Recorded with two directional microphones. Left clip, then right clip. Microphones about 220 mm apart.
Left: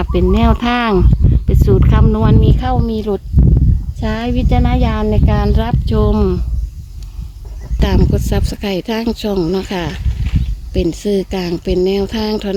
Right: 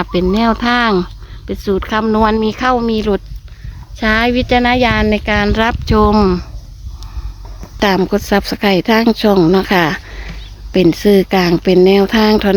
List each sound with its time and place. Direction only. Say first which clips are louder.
0.0 s speech: right 1 dB; centre (ahead or behind); by 6.4 s 20° right (ahead or behind)
7.8 s speech: right 5 dB; 20° right (ahead or behind)